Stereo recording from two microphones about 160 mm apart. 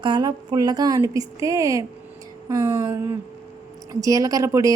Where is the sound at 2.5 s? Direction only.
20° right (ahead or behind).